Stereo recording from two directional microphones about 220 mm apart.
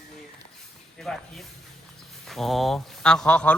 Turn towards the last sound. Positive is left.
turn(degrees=5)  # may be behind; listen again after turning